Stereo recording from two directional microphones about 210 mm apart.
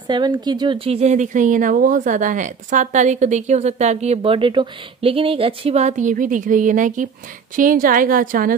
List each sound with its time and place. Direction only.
0.1 s speech: 20° right (ahead or behind); by 8.5 s 40° right (ahead or behind)